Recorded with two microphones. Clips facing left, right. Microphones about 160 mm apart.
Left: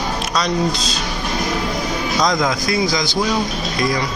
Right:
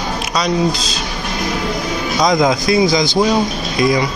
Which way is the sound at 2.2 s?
15° right (ahead or behind).